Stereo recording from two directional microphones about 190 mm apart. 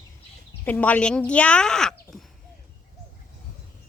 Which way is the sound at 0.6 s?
10° left (ahead or behind).